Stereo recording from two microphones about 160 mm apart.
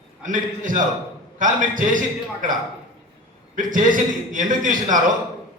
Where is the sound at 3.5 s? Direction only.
55° right (ahead or behind).